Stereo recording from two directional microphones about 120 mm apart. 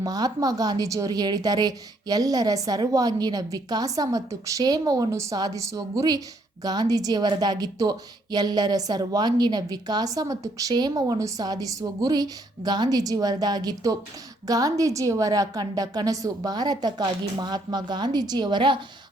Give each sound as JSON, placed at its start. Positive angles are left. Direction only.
{"t": 0.0, "sound": "a woman's voice", "side_deg": -30}